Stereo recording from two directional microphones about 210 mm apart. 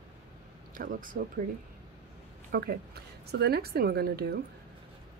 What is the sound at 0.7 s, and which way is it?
Speech, 40° right (ahead or behind).